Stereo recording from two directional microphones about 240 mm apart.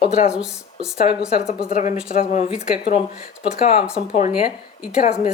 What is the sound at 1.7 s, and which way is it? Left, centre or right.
Speech, left.